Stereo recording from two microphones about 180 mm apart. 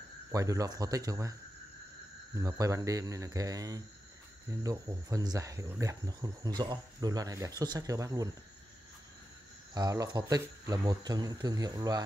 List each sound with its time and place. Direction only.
0.3 s speech: 20° right (ahead or behind)
2.3 s speech: 20° right (ahead or behind)
9.8 s speech: 20° right (ahead or behind)